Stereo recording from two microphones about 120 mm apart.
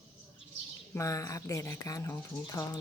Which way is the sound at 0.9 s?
30° left (ahead or behind).